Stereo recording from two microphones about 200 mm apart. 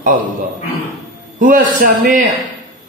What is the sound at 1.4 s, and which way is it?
Speech, 40° right (ahead or behind).